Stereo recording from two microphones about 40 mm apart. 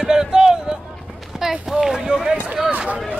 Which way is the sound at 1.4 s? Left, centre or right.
Centre.